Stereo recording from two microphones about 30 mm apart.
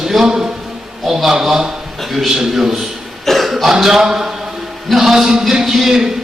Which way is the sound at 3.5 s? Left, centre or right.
Centre.